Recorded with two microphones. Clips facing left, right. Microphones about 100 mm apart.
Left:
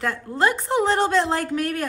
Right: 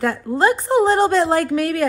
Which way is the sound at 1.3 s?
80° right.